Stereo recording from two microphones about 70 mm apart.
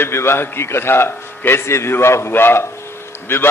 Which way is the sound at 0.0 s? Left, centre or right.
Left.